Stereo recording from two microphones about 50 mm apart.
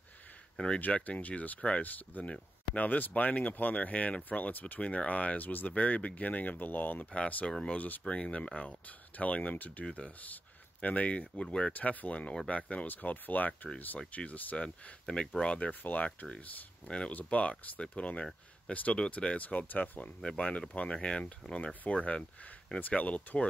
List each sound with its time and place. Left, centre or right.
0.6 s speech: left
11.7 s speech: left
12.8 s speech: left
15.0 s speech: centre
15.8 s speech: left
16.8 s speech: left
20.2 s speech: centre